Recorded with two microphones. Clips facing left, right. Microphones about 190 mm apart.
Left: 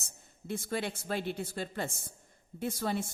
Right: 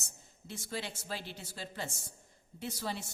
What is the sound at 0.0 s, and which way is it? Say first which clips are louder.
A woman's voice: left 3 dB; 55° left (ahead or behind).